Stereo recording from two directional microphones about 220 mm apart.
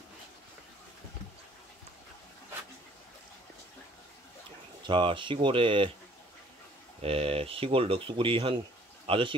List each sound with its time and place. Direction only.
4.8 s speech: 20° right (ahead or behind)
7.0 s speech: 25° right (ahead or behind)